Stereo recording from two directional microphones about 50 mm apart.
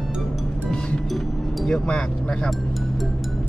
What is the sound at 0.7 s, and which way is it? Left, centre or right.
Music, centre.